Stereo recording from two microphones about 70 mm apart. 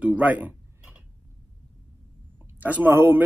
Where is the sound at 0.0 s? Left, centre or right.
Right.